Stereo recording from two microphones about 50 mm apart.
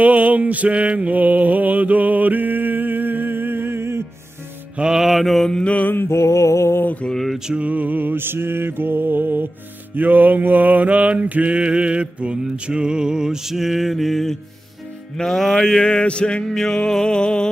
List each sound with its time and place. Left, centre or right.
0.0 s mantra: right
4.8 s music: centre
5.1 s mantra: centre
5.5 s mantra: centre
5.9 s music: left
7.3 s music: centre
7.6 s music: right; by 14.3 s centre
15.2 s mantra: centre